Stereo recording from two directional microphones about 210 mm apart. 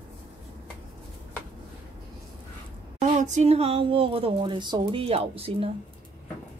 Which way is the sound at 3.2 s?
35° right (ahead or behind).